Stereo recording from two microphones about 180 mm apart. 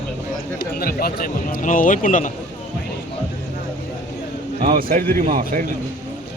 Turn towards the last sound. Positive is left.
turn(degrees=-50)  # may be behind; listen again after turning